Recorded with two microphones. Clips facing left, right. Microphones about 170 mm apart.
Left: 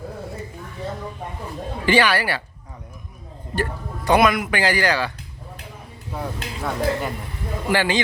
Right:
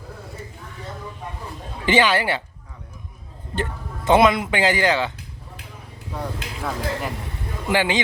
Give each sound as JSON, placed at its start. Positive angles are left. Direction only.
{"t": 1.9, "sound": "speech", "side_deg": -20}
{"t": 3.5, "sound": "speech", "side_deg": -20}
{"t": 6.1, "sound": "speech", "side_deg": 0}
{"t": 7.7, "sound": "a man's voice", "side_deg": -15}